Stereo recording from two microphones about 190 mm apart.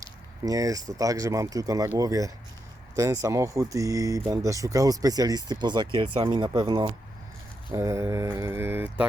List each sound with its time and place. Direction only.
0.0 s a sound: 20° right (ahead or behind)
0.9 s mantra: 20° right (ahead or behind)
2.9 s speech: 20° right (ahead or behind)
7.7 s mantra: 15° right (ahead or behind)